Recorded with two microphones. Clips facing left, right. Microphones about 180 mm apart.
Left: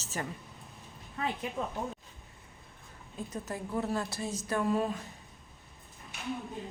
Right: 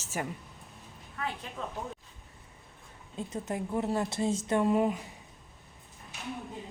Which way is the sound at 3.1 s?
25° right (ahead or behind).